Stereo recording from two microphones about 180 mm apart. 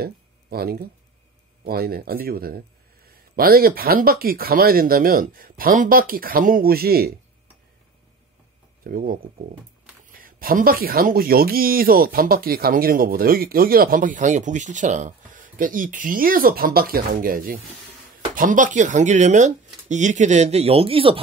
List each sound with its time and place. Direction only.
0.0 s a sound: 60° right (ahead or behind)
1.6 s speech: 60° right (ahead or behind)
8.8 s speech: 55° right (ahead or behind); by 21.2 s 30° right (ahead or behind)